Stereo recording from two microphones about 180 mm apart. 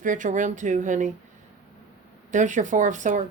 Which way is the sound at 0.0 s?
45° right (ahead or behind).